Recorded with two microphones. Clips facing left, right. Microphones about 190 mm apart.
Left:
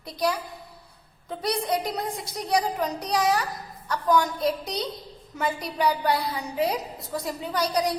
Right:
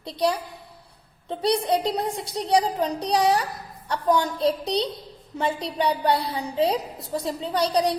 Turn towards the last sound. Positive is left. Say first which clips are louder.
# right 3 dB
turn(degrees=-30)  # may be behind; listen again after turning